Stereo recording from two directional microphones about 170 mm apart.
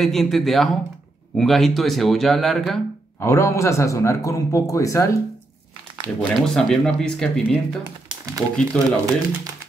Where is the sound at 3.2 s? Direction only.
15° left (ahead or behind).